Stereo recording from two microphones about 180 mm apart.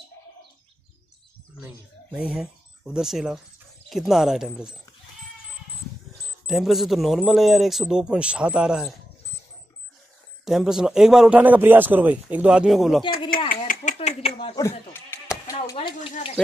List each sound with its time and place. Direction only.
2.1 s a man's voice: 5° right (ahead or behind)
6.4 s a man's voice: centre (ahead or behind)
10.4 s a man's voice: centre (ahead or behind)
13.5 s a sound: 45° left (ahead or behind)
13.9 s speech: 35° left (ahead or behind)
15.6 s speech: 25° left (ahead or behind)